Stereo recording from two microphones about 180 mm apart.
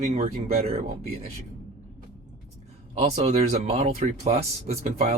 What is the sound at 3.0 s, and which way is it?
Speech, 35° right (ahead or behind).